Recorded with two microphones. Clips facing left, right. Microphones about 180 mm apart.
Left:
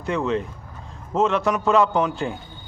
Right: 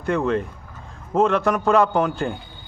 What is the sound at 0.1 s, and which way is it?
Speech, 55° right (ahead or behind).